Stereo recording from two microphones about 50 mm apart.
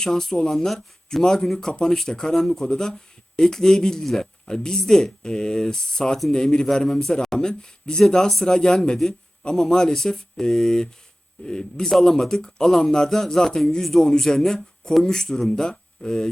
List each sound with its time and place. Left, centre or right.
0.0 s speech: centre